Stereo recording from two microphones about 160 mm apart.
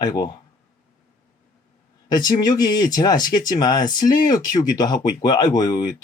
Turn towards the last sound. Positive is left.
turn(degrees=25)  # may be behind; listen again after turning